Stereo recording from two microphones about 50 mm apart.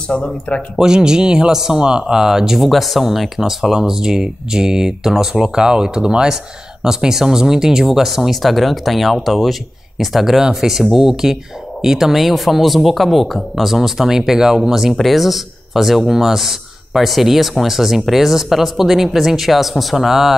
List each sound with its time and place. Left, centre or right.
0.1 s speech: left
0.7 s speech: centre